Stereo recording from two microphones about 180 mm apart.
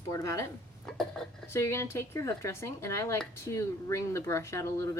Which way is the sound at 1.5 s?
15° left (ahead or behind).